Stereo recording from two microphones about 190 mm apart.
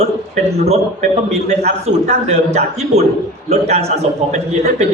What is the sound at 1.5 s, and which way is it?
A man's voice, 35° right (ahead or behind).